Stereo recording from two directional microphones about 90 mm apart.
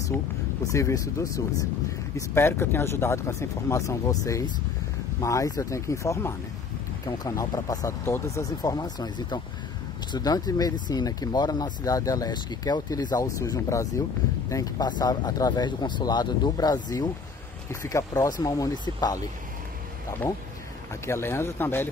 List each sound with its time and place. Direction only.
0.7 s speech: 35° left (ahead or behind)
17.6 s speech: 35° left (ahead or behind)
21.0 s speech: 30° left (ahead or behind)